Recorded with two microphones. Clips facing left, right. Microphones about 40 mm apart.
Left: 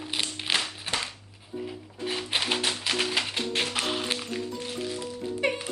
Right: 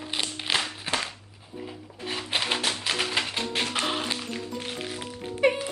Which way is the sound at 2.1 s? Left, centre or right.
Centre.